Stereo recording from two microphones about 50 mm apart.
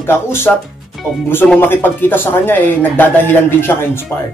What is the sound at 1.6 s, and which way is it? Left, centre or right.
A man's voice, left.